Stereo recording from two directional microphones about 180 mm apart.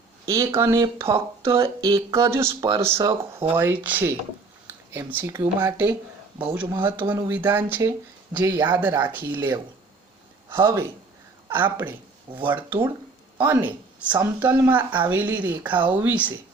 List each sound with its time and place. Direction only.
0.3 s speech: 15° right (ahead or behind)